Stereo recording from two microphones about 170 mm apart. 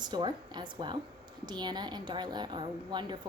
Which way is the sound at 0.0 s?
25° right (ahead or behind).